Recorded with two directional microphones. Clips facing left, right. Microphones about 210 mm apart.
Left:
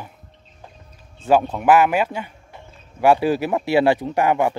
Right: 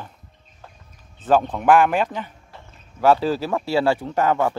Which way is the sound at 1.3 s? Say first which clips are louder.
Left 1 dB; 10° left (ahead or behind).